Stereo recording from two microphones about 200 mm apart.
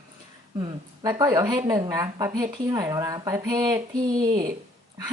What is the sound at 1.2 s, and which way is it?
Speech, 20° right (ahead or behind).